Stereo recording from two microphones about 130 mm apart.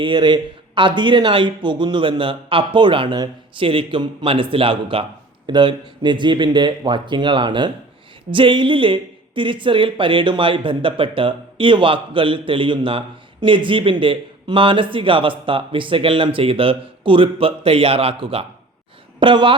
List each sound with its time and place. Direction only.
0.0 s speech: 40° right (ahead or behind)